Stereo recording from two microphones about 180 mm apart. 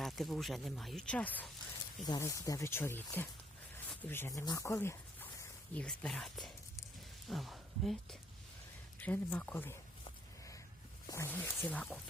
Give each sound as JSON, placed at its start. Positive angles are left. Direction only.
{"t": 0.0, "sound": "speech", "side_deg": 0}
{"t": 9.0, "sound": "speech", "side_deg": 10}
{"t": 11.0, "sound": "speech", "side_deg": 15}